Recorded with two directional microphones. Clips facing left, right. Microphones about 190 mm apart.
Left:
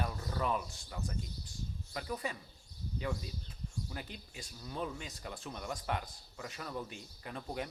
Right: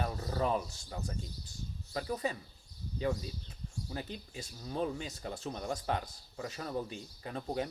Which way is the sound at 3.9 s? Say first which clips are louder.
Right 5 dB; 30° right (ahead or behind).